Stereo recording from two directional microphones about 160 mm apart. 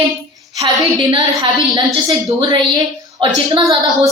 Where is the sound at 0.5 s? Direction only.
20° right (ahead or behind).